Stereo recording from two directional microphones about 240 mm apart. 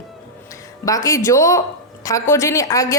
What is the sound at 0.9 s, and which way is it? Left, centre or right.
A woman's voice, centre.